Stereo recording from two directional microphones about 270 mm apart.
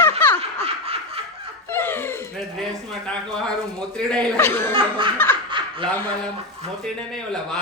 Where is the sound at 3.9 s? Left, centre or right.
Centre.